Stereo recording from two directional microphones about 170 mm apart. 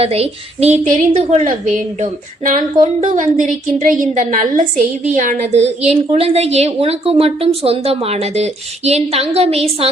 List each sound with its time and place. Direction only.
0.0 s a woman's voice: 35° right (ahead or behind)